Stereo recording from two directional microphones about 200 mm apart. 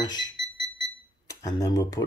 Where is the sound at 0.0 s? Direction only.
20° left (ahead or behind).